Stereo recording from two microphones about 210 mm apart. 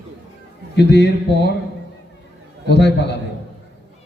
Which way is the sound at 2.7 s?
55° left (ahead or behind).